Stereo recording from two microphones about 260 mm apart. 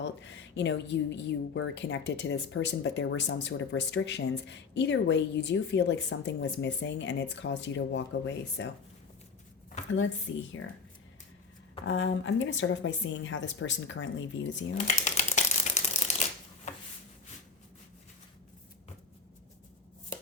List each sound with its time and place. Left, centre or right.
0.0 s speech: left
10.3 s speech: left
11.9 s speech: left
14.8 s shuffling cards: left